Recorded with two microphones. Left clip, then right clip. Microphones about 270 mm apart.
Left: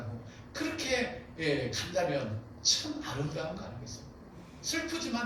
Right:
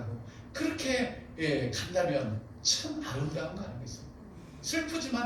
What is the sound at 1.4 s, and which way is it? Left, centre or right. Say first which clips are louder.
A man's voice: right 1 dB; right.